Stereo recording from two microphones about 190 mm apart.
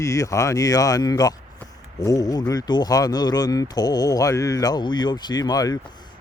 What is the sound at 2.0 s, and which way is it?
Mantra, 20° left (ahead or behind).